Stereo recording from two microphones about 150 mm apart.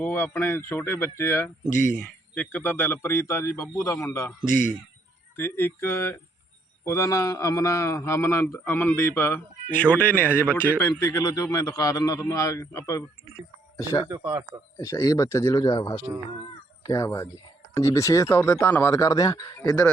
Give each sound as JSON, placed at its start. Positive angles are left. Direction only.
{"t": 0.0, "sound": "a man's voice", "side_deg": 15}
{"t": 4.4, "sound": "a man's voice", "side_deg": -65}
{"t": 5.4, "sound": "a man's voice", "side_deg": 15}
{"t": 14.1, "sound": "speech", "side_deg": -20}
{"t": 14.8, "sound": "a man's voice", "side_deg": 20}